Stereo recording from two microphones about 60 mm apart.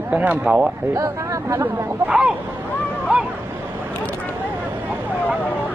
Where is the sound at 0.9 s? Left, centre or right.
Right.